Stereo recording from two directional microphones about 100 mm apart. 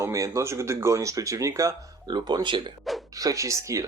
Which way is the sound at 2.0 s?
45° right (ahead or behind).